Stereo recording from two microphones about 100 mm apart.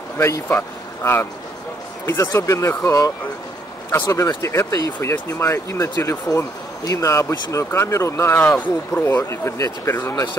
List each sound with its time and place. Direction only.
0.2 s speech: 25° left (ahead or behind)
2.2 s speech: 35° left (ahead or behind)